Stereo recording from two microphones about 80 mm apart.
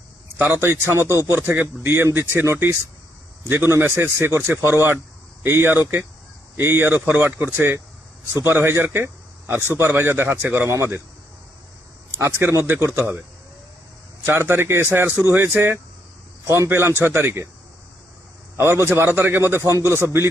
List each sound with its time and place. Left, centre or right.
0.3 s a man's voice: right
12.1 s a man's voice: right
14.3 s a man's voice: right
18.5 s a man's voice: right